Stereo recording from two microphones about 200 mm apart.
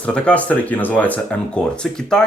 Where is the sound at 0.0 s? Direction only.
5° left (ahead or behind).